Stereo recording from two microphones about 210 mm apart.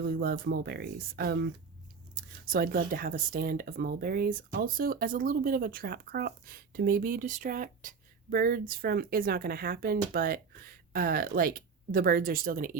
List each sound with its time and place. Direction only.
0.0 s speech: 50° right (ahead or behind)